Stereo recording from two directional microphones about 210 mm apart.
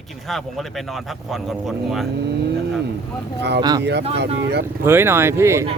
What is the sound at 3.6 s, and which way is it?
Speech, 20° right (ahead or behind).